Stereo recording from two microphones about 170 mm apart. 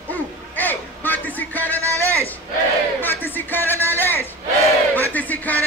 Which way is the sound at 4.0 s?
10° left (ahead or behind).